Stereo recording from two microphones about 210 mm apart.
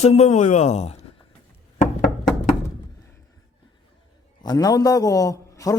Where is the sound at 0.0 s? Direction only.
30° left (ahead or behind).